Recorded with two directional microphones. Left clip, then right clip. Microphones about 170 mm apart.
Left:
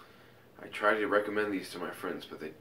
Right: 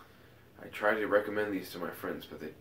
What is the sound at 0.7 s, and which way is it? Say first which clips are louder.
Speech: left 1 dB; 15° right (ahead or behind).